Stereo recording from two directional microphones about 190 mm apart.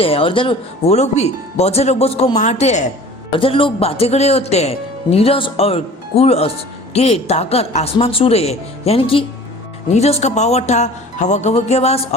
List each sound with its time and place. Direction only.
0.0 s speech: 30° left (ahead or behind)